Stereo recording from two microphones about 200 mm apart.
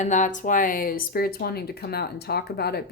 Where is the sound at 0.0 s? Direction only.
40° left (ahead or behind).